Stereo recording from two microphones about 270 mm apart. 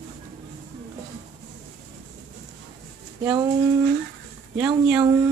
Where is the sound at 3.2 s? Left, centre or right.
Centre.